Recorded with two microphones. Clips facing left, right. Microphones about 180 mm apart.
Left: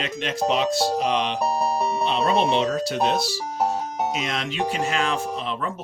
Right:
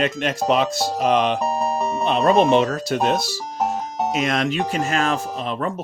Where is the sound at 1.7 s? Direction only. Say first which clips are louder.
Right 1 dB; 15° left (ahead or behind).